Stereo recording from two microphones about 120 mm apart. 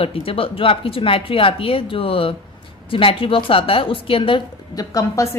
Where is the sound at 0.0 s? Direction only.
50° left (ahead or behind).